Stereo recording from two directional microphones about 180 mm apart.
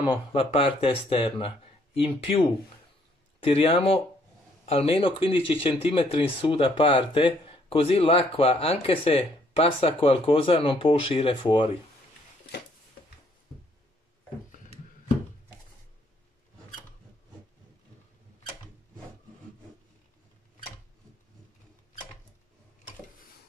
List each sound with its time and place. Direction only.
0.0 s speech: 30° left (ahead or behind)
3.4 s speech: 30° left (ahead or behind)